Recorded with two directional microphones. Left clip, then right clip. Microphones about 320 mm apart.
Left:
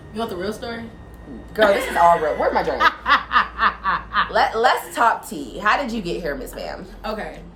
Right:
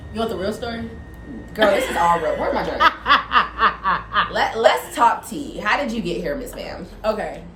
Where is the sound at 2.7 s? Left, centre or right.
Centre.